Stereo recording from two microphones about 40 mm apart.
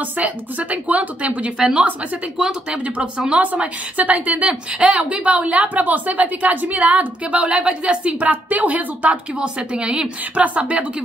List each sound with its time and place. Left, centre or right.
0.2 s a woman's voice: right
2.3 s speech: right
3.3 s a woman's voice: right
9.8 s speech: right
10.4 s a woman's voice: right